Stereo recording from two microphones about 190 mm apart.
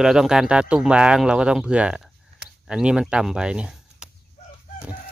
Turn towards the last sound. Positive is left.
turn(degrees=-5)  # may be behind; listen again after turning